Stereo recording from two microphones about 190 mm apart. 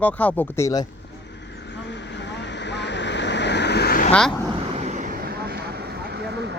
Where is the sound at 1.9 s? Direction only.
65° left (ahead or behind).